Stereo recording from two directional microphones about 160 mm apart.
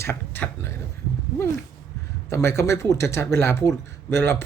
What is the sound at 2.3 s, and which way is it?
Speech, 15° left (ahead or behind).